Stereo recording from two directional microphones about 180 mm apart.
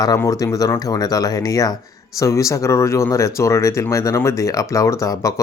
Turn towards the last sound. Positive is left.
turn(degrees=15)  # may be behind; listen again after turning